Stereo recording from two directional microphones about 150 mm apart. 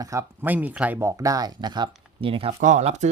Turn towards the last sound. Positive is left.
turn(degrees=-50)  # may be behind; listen again after turning